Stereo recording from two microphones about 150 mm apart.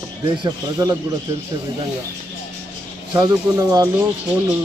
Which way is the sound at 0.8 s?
25° right (ahead or behind).